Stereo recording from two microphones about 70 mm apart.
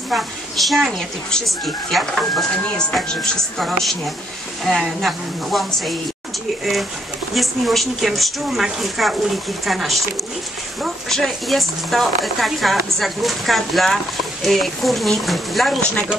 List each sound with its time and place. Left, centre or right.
0.1 s speech: centre
15.8 s speech: centre